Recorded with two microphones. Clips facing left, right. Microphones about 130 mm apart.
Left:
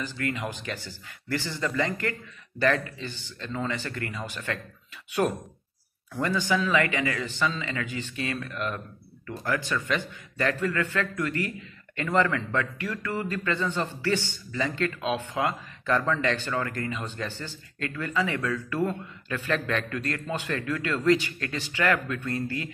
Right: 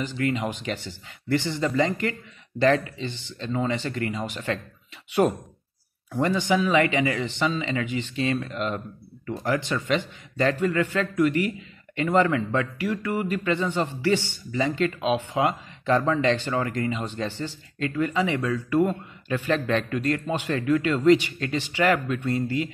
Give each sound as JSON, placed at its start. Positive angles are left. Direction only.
{"t": 0.0, "sound": "a man's voice", "side_deg": -20}
{"t": 6.1, "sound": "a man's voice", "side_deg": -20}